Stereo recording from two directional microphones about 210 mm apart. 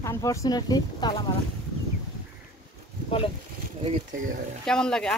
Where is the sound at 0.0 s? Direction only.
15° left (ahead or behind).